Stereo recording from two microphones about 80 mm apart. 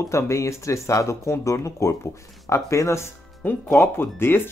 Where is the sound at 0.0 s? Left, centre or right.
Left.